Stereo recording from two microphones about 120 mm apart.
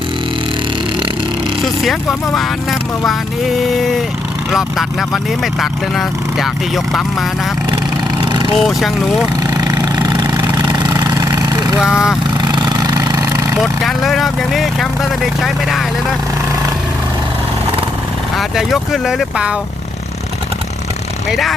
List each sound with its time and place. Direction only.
1.8 s speech: centre (ahead or behind)
8.2 s vehicle: 40° right (ahead or behind)
8.5 s speech: centre (ahead or behind)
9.6 s vehicle: 30° right (ahead or behind)
11.8 s speech: 5° right (ahead or behind)
12.4 s vehicle: 35° right (ahead or behind)
13.6 s speech: centre (ahead or behind)
18.3 s speech: centre (ahead or behind)
21.2 s speech: centre (ahead or behind)